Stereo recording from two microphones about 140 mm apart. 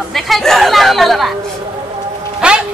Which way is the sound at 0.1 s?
Centre (ahead or behind).